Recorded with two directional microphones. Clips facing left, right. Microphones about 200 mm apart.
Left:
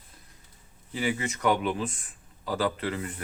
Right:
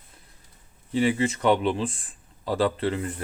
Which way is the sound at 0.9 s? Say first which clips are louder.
Right 7 dB; 30° right (ahead or behind).